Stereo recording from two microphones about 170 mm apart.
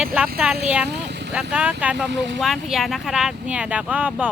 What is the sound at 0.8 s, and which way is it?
Speech, 85° right.